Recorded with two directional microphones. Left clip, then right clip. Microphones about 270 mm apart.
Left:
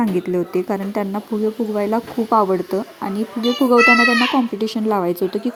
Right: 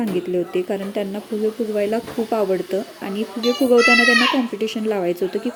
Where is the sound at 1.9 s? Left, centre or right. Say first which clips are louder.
Left 5 dB; left.